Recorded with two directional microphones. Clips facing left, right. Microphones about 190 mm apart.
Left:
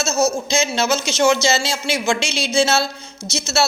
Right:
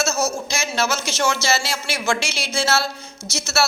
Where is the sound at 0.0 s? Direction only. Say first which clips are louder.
Left 3 dB; 20° left (ahead or behind).